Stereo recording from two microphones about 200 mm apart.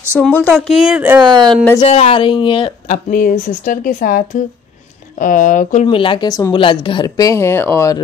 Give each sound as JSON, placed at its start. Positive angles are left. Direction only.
{"t": 0.2, "sound": "speech", "side_deg": 5}
{"t": 1.2, "sound": "speech", "side_deg": -20}
{"t": 1.8, "sound": "speech", "side_deg": 30}
{"t": 3.1, "sound": "speech", "side_deg": 40}